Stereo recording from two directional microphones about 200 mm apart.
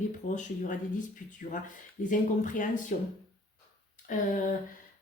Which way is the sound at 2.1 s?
40° left (ahead or behind).